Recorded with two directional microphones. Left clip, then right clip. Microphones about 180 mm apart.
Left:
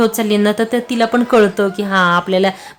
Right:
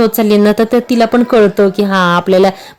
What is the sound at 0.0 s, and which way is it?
Speech, 25° right (ahead or behind).